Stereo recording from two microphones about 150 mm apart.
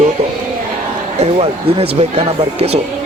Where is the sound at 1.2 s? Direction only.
45° right (ahead or behind).